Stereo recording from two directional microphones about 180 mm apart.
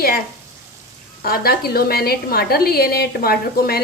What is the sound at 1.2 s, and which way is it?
A woman's voice, 55° left (ahead or behind).